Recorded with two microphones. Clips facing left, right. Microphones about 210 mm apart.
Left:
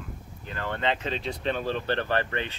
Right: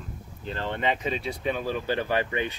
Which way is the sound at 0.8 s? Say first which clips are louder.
Right 1 dB; 10° right (ahead or behind).